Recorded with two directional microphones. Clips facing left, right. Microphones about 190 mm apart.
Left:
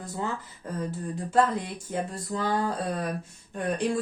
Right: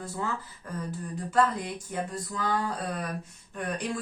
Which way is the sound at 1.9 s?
30° left (ahead or behind).